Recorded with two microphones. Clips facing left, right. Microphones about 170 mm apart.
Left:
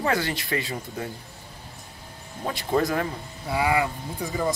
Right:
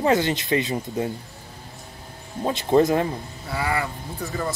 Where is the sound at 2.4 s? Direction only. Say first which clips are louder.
Right 6 dB; 25° right (ahead or behind).